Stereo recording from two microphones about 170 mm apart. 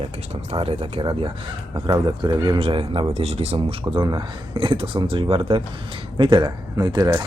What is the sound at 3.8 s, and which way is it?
Speech, 20° right (ahead or behind).